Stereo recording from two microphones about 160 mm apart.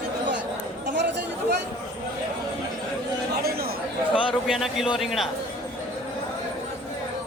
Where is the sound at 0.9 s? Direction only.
90° right.